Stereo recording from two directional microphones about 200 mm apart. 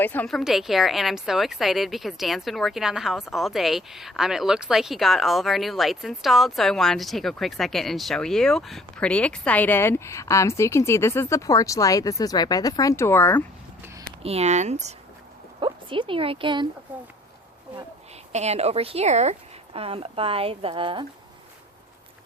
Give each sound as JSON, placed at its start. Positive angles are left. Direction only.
{"t": 0.0, "sound": "a woman's voice", "side_deg": 10}
{"t": 14.2, "sound": "a woman's voice", "side_deg": -30}
{"t": 16.9, "sound": "speech", "side_deg": -10}
{"t": 18.3, "sound": "a woman's voice", "side_deg": -35}